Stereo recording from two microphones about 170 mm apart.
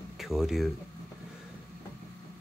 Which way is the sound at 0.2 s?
Centre (ahead or behind).